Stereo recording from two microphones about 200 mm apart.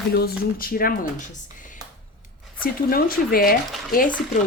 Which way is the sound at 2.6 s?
45° left (ahead or behind).